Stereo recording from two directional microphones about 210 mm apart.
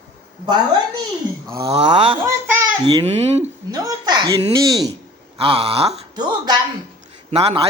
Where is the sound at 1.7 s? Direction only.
25° right (ahead or behind).